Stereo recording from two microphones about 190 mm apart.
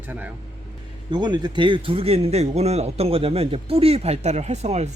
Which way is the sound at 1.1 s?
20° right (ahead or behind).